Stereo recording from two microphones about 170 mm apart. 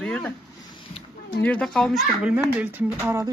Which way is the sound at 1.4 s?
5° left (ahead or behind).